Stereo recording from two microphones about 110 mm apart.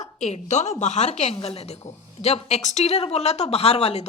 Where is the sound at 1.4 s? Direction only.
65° left (ahead or behind).